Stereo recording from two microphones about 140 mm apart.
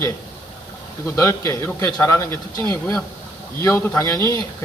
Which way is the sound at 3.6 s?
20° left (ahead or behind).